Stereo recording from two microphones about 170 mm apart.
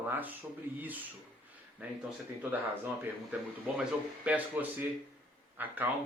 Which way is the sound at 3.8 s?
10° right (ahead or behind).